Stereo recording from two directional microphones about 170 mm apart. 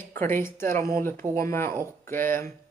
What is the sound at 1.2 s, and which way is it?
Speech, 15° right (ahead or behind).